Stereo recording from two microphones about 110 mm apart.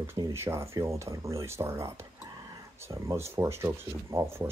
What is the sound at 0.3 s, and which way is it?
Speech, 25° right (ahead or behind).